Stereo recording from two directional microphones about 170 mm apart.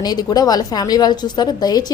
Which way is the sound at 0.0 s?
25° left (ahead or behind).